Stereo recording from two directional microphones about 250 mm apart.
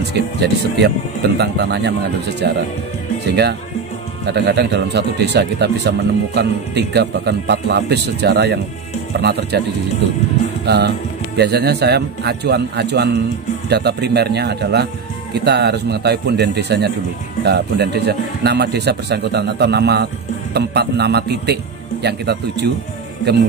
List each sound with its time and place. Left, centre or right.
0.1 s speech: right
10.6 s speech: right